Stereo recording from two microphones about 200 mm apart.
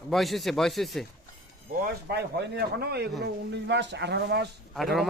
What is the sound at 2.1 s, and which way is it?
Speech, 55° right (ahead or behind).